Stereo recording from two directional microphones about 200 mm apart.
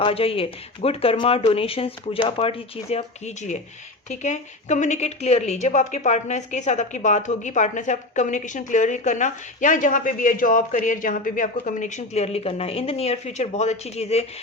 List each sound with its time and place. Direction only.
0.0 s a woman's voice: 30° left (ahead or behind)